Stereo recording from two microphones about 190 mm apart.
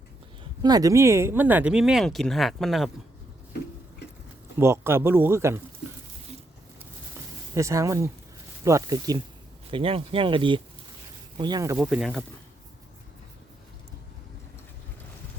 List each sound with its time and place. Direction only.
0.6 s speech: 20° right (ahead or behind); by 2.9 s centre (ahead or behind)
4.5 s speech: 15° right (ahead or behind)
7.5 s speech: 15° right (ahead or behind)
9.7 s speech: 30° right (ahead or behind)
11.8 s speech: centre (ahead or behind)